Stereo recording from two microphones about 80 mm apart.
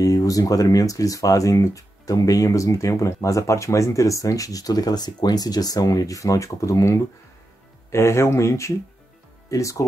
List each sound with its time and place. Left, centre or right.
0.0 s speech: left